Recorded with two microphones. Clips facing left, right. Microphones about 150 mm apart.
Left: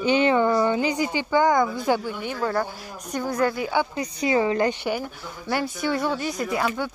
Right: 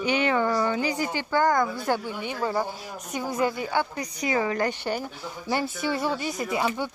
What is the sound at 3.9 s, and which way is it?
Speech, 25° left (ahead or behind).